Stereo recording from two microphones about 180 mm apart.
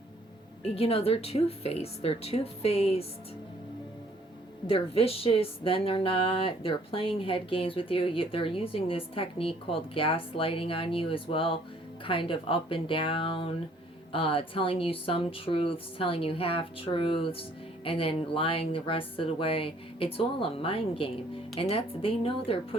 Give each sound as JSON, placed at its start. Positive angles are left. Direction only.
{"t": 0.8, "sound": "speech", "side_deg": 35}
{"t": 4.6, "sound": "speech", "side_deg": 30}